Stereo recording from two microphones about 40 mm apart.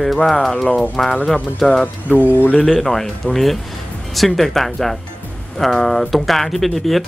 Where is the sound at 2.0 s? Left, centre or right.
Left.